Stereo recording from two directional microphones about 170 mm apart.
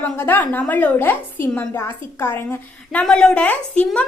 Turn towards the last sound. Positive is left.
turn(degrees=10)  # may be behind; listen again after turning